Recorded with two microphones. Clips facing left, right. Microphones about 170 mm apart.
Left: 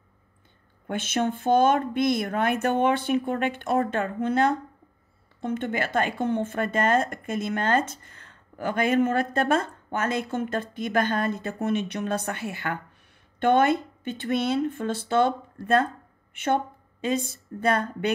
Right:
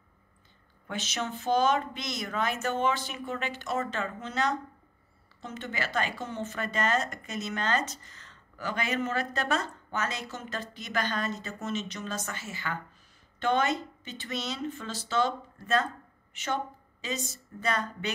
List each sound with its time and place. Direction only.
0.8 s a woman's voice: 55° left (ahead or behind)